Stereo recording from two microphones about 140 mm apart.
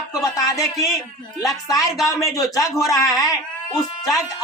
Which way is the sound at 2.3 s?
25° left (ahead or behind).